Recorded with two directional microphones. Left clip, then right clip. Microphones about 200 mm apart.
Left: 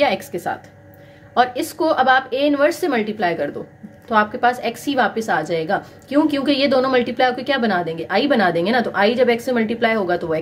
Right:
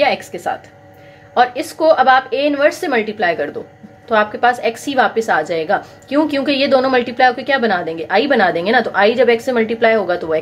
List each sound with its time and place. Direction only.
0.0 s a woman's voice: 25° left (ahead or behind)